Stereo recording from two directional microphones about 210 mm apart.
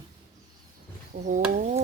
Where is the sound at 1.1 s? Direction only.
35° right (ahead or behind).